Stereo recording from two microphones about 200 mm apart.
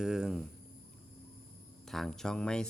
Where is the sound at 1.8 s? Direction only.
Centre (ahead or behind).